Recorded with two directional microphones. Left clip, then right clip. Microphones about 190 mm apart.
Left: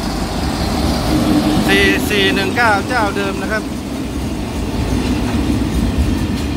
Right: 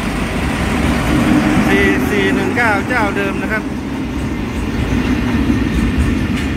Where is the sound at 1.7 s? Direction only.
5° right (ahead or behind).